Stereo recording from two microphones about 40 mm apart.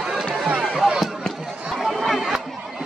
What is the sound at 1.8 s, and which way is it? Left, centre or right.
Chatter, centre.